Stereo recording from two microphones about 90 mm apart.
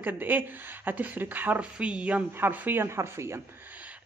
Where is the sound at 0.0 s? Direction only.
20° right (ahead or behind).